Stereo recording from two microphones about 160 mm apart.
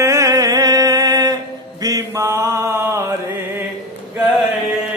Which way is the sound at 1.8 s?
20° right (ahead or behind).